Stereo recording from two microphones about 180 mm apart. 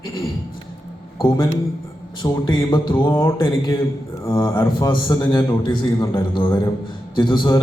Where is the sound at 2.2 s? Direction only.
20° left (ahead or behind).